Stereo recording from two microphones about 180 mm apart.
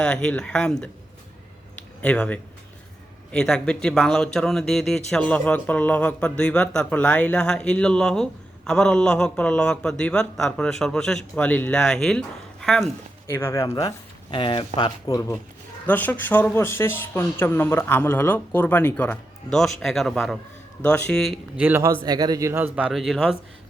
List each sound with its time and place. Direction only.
0.0 s speech: 5° left (ahead or behind)
2.0 s speech: 5° left (ahead or behind)
13.3 s speech: 15° left (ahead or behind)
21.6 s speech: 15° right (ahead or behind)